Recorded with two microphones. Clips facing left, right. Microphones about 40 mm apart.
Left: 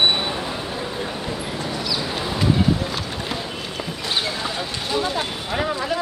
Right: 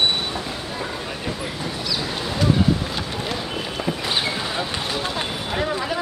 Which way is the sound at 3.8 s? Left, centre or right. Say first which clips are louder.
Right 1 dB; centre.